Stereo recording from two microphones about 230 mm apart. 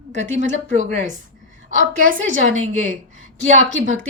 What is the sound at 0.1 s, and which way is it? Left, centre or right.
Speech, right.